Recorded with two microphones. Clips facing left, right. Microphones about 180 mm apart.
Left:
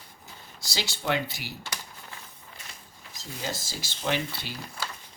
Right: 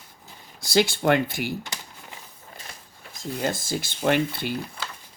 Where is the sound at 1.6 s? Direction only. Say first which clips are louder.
Right 1 dB; 20° right (ahead or behind).